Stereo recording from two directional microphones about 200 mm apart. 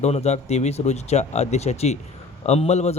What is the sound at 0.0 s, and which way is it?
Speech, 35° left (ahead or behind).